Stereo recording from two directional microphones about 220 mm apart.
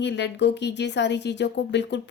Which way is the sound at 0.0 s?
50° left (ahead or behind).